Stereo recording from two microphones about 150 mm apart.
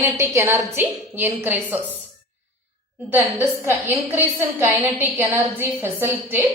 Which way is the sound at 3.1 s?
15° right (ahead or behind).